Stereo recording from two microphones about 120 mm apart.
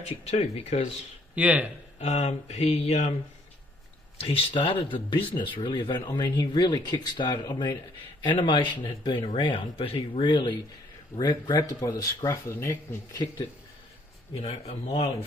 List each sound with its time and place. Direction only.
0.0 s speech: 60° left (ahead or behind)
1.3 s speech: 10° right (ahead or behind)
2.0 s speech: 60° left (ahead or behind)
4.2 s speech: 50° left (ahead or behind); by 13.3 s 25° left (ahead or behind)
14.3 s speech: 60° left (ahead or behind)